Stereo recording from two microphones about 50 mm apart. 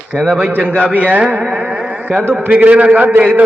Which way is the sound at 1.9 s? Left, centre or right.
Right.